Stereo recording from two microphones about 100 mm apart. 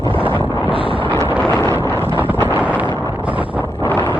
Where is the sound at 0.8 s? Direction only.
65° right (ahead or behind).